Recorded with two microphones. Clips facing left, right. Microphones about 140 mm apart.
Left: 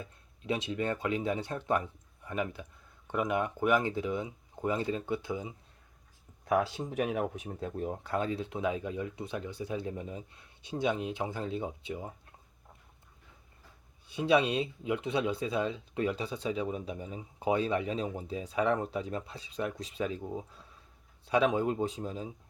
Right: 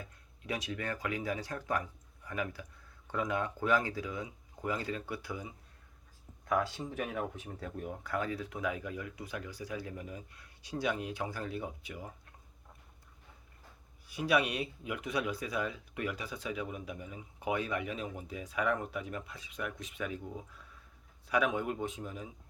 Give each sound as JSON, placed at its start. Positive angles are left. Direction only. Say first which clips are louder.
{"t": 0.0, "sound": "speech", "louder": "left 4 dB", "side_deg": 25}
{"t": 6.5, "sound": "speech", "louder": "left 4 dB", "side_deg": 15}
{"t": 14.1, "sound": "speech", "louder": "left 4 dB", "side_deg": 25}